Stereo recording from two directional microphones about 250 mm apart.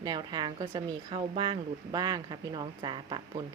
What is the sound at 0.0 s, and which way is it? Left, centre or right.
Speech, centre.